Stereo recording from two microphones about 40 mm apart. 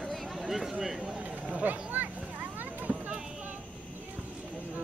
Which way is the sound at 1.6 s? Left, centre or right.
Right.